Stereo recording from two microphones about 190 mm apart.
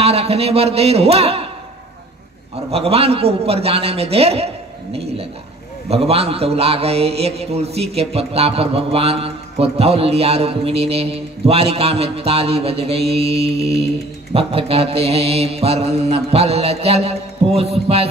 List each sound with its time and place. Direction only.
0.0 s a man's voice: 30° right (ahead or behind)
2.7 s a man's voice: 30° right (ahead or behind)
4.9 s a sound: 30° right (ahead or behind)
5.9 s a man's voice: 30° right (ahead or behind)